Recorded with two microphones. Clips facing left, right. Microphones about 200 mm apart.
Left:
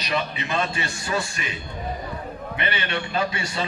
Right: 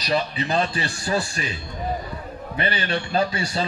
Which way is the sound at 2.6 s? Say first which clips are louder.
Right 3 dB; 35° right (ahead or behind).